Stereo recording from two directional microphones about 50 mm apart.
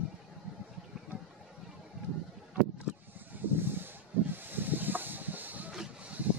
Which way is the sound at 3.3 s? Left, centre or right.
Right.